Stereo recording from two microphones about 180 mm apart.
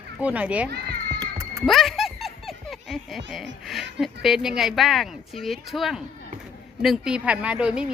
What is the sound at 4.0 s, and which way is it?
Speech, centre (ahead or behind).